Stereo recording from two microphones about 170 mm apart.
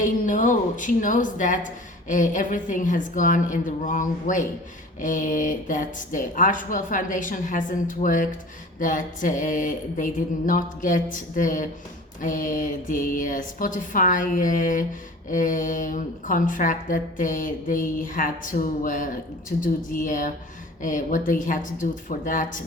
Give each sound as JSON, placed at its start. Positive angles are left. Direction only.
{"t": 0.0, "sound": "speech", "side_deg": 50}